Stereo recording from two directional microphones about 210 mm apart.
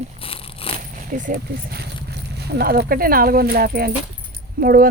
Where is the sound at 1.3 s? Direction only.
50° right (ahead or behind).